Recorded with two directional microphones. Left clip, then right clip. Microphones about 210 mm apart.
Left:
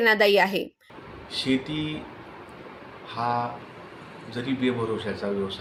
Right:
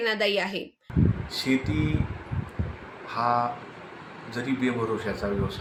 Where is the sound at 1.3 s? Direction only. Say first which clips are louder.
Left 4 dB; 5° left (ahead or behind).